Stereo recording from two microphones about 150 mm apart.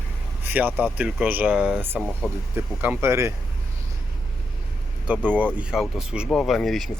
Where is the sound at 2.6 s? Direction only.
15° right (ahead or behind).